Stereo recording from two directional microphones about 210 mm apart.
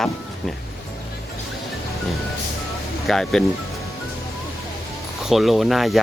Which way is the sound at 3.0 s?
Centre (ahead or behind).